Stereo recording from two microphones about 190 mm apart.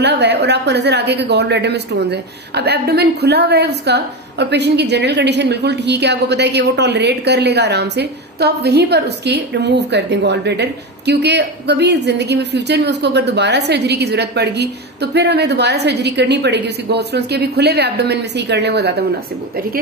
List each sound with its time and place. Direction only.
0.0 s speech: 65° right (ahead or behind)